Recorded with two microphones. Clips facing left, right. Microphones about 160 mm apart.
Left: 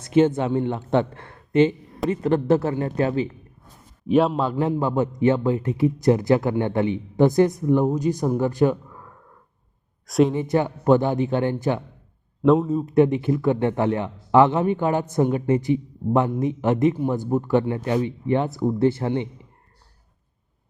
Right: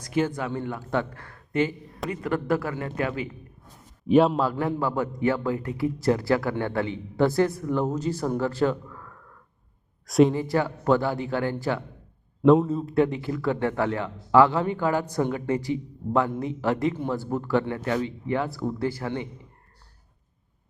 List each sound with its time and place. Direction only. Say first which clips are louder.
0.0 s a man's voice: left 8 dB; 25° left (ahead or behind)
4.1 s a man's voice: even; centre (ahead or behind)
4.4 s a man's voice: left 3 dB; 20° left (ahead or behind)
10.1 s a man's voice: even; centre (ahead or behind)
10.3 s a man's voice: left 3 dB; 20° left (ahead or behind)
12.4 s a man's voice: even; centre (ahead or behind)
12.7 s a man's voice: left 5 dB; 20° left (ahead or behind)